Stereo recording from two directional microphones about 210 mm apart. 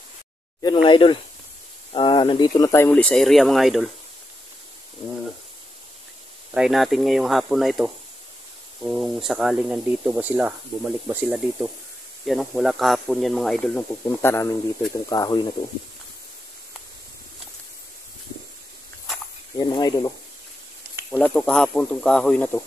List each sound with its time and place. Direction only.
0.8 s speech: 25° left (ahead or behind); by 3.8 s centre (ahead or behind)
6.5 s speech: centre (ahead or behind); by 15.4 s 15° left (ahead or behind)
19.6 s speech: 20° left (ahead or behind)
21.1 s speech: 5° left (ahead or behind)